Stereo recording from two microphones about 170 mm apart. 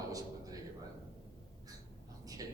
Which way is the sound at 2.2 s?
20° right (ahead or behind).